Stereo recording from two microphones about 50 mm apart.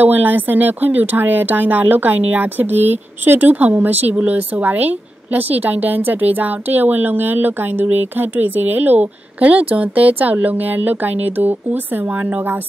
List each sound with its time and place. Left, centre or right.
0.0 s speech: right